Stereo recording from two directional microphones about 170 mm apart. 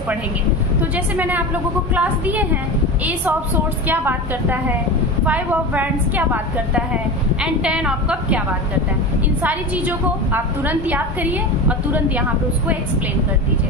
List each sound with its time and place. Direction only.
0.9 s a woman's voice: 10° right (ahead or behind)
9.4 s a woman's voice: 10° right (ahead or behind)